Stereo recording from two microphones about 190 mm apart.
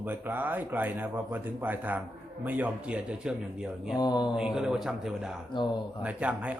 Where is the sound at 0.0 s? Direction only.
10° right (ahead or behind).